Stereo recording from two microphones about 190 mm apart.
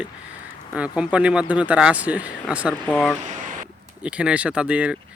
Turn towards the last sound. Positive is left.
turn(degrees=-5)  # may be behind; listen again after turning